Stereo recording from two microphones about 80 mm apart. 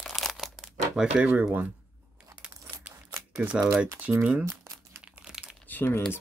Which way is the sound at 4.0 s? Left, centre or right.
Centre.